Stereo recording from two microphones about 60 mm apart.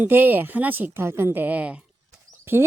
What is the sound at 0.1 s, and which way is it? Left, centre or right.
Speech, right.